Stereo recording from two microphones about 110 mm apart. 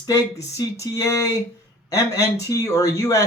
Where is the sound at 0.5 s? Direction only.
30° left (ahead or behind).